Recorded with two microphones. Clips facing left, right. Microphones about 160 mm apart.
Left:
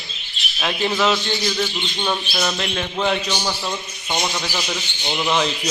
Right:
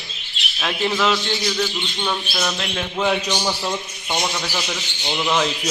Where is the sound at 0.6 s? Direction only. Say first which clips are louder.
Left 1 dB; centre (ahead or behind).